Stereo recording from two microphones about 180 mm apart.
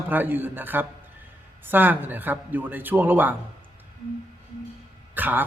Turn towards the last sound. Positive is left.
turn(degrees=-10)  # may be behind; listen again after turning